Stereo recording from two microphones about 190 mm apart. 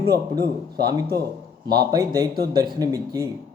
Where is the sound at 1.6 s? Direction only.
20° right (ahead or behind).